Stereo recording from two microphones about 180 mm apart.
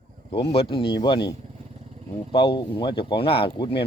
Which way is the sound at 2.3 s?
25° left (ahead or behind).